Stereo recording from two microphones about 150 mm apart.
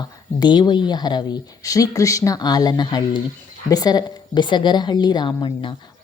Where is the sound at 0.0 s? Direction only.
30° left (ahead or behind).